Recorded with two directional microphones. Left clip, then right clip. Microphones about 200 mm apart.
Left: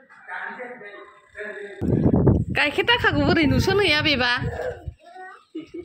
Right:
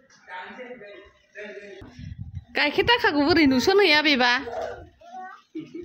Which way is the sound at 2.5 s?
15° right (ahead or behind).